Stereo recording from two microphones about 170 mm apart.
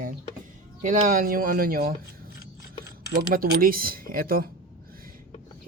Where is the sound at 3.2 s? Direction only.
65° right (ahead or behind).